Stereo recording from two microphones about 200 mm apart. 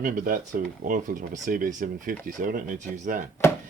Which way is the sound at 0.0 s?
40° right (ahead or behind).